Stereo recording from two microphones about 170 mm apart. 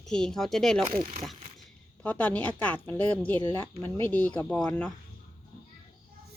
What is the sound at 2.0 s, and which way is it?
A woman's voice, 10° left (ahead or behind).